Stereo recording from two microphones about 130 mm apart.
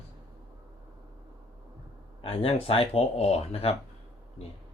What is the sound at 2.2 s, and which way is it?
Speech, 45° left (ahead or behind).